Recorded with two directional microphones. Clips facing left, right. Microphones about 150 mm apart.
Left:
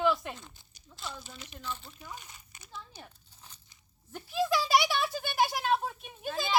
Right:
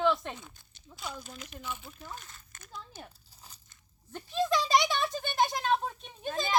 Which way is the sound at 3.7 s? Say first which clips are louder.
Right 1 dB; 10° left (ahead or behind).